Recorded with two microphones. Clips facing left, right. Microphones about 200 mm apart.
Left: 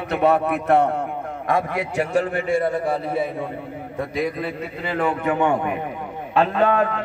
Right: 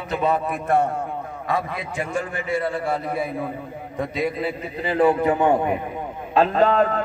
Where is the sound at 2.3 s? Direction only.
50° left (ahead or behind).